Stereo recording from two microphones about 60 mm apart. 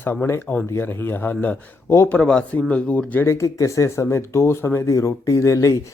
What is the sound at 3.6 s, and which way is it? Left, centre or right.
Speech, left.